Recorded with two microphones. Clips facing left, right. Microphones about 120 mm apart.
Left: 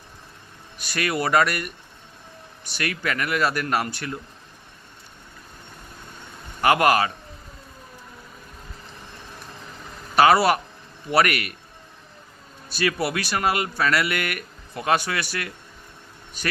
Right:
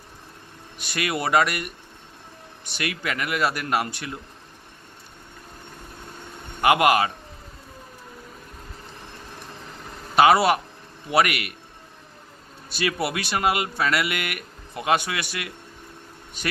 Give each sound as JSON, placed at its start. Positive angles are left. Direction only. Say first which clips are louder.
{"t": 0.8, "sound": "a man's voice", "louder": "left 2 dB", "side_deg": -20}
{"t": 6.6, "sound": "a man's voice", "louder": "even", "side_deg": -15}
{"t": 10.2, "sound": "a man's voice", "louder": "even", "side_deg": -20}
{"t": 12.7, "sound": "speech", "louder": "left 1 dB", "side_deg": -20}